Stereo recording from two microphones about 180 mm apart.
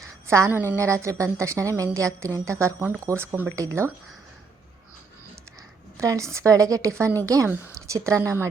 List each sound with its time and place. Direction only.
0.3 s a woman's voice: 15° right (ahead or behind)
6.0 s a woman's voice: 15° right (ahead or behind)